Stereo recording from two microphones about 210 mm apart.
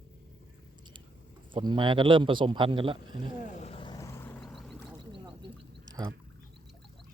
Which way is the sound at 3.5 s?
30° left (ahead or behind).